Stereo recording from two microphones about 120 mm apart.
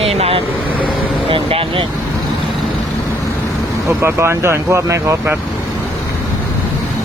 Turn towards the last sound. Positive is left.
turn(degrees=-25)  # may be behind; listen again after turning